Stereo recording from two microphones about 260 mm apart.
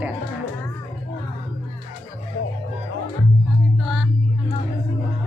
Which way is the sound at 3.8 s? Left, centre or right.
Centre.